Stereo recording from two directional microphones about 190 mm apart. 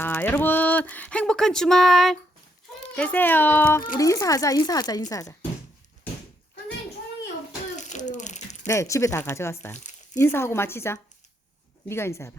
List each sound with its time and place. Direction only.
0.0 s speech: 10° left (ahead or behind)
7.8 s a sound: 40° left (ahead or behind)
8.6 s speech: 15° left (ahead or behind)